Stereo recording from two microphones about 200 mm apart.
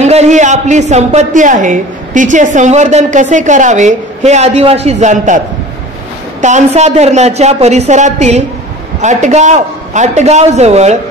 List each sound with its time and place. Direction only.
0.0 s a woman's voice: 35° right (ahead or behind)
6.4 s a woman's voice: 35° right (ahead or behind)